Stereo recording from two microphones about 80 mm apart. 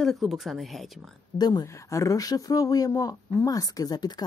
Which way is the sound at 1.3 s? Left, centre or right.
Left.